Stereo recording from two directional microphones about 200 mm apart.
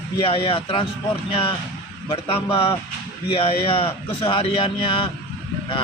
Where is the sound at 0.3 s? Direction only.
25° left (ahead or behind).